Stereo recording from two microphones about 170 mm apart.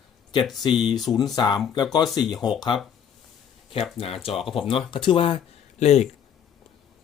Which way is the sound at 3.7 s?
35° left (ahead or behind).